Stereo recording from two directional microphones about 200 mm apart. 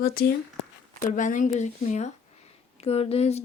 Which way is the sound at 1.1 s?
40° left (ahead or behind).